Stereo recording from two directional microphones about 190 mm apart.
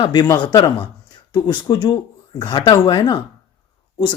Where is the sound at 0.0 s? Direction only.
20° left (ahead or behind).